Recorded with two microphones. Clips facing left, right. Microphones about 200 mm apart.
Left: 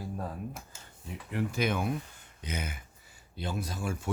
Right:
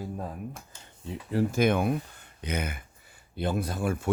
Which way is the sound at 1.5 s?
50° right (ahead or behind).